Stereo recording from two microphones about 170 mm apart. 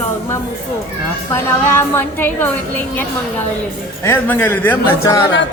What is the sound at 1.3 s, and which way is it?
A woman's voice, 15° left (ahead or behind).